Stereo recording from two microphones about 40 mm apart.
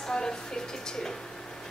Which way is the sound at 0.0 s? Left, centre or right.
Centre.